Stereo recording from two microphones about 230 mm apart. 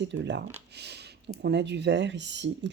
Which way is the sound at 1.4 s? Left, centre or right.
Right.